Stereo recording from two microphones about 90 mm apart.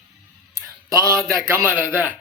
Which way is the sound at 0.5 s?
35° right (ahead or behind).